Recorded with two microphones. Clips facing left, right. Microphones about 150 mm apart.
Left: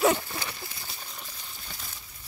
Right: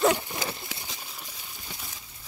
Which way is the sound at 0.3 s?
20° right (ahead or behind).